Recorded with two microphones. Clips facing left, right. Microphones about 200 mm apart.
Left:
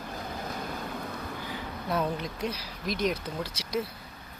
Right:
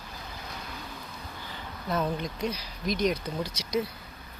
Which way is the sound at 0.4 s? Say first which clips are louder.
Left 5 dB; 50° left (ahead or behind).